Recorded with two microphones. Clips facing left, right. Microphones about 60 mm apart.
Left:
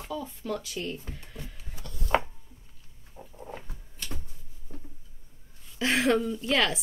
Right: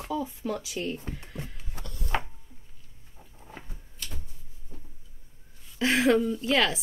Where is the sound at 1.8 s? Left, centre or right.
Right.